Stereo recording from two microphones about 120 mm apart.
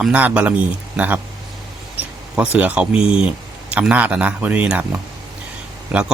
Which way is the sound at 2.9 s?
50° left (ahead or behind).